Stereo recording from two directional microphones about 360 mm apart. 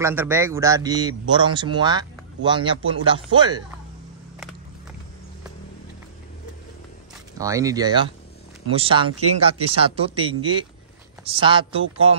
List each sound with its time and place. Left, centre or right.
0.0 s a man's voice: centre
7.3 s a man's voice: centre